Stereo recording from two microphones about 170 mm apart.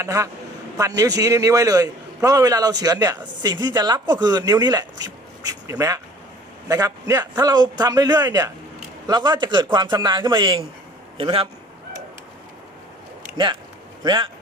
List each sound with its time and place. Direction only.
0.0 s a man's voice: 20° right (ahead or behind)
13.3 s speech: 30° right (ahead or behind)